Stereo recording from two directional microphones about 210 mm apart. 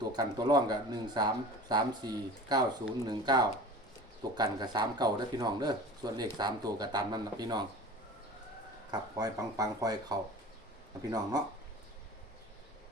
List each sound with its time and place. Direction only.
0.0 s speech: 20° right (ahead or behind)
8.9 s speech: 15° right (ahead or behind)